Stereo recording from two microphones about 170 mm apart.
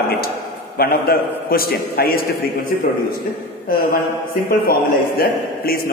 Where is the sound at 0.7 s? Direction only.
65° left (ahead or behind).